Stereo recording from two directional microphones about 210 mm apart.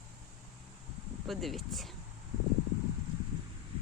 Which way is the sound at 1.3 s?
Centre (ahead or behind).